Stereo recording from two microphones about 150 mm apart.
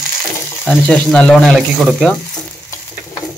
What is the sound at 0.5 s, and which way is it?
Speech, 5° left (ahead or behind).